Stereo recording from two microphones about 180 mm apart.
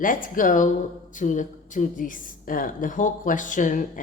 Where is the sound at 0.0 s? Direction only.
50° left (ahead or behind).